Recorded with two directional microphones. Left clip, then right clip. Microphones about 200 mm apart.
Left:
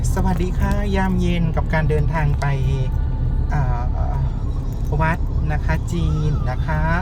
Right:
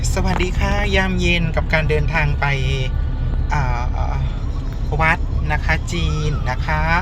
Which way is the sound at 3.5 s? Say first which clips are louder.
Right 5 dB; 10° left (ahead or behind).